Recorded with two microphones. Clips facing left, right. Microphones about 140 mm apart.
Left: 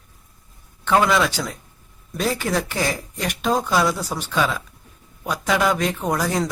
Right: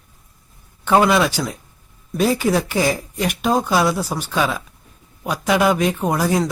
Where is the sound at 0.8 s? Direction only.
15° right (ahead or behind).